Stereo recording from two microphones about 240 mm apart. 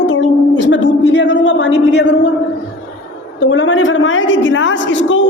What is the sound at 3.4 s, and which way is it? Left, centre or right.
A woman's voice, left.